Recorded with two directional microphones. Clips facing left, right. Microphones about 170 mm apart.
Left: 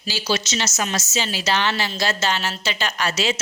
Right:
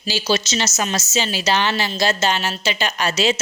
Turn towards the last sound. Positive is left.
turn(degrees=-20)  # may be behind; listen again after turning